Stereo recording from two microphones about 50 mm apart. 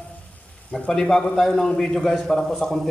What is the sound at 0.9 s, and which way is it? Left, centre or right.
A man's voice, centre.